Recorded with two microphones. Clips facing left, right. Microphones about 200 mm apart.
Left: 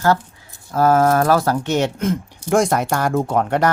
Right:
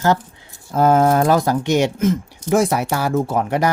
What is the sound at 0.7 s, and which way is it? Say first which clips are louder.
Speech: right 1 dB; 20° right (ahead or behind).